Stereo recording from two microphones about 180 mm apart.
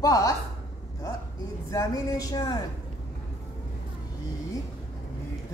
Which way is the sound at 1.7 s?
20° left (ahead or behind).